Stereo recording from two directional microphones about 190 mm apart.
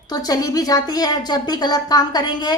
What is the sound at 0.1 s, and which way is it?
A woman's voice, 20° left (ahead or behind).